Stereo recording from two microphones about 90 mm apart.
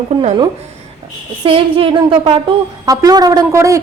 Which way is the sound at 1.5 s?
80° right.